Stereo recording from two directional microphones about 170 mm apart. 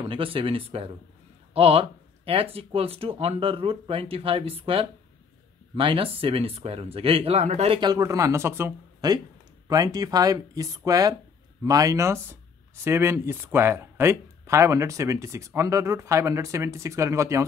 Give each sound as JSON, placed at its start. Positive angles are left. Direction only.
{"t": 0.0, "sound": "speech", "side_deg": -30}